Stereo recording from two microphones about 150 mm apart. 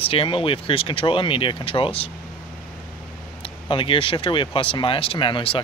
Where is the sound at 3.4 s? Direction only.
35° left (ahead or behind).